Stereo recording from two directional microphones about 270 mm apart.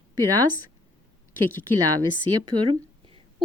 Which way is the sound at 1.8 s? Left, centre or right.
Centre.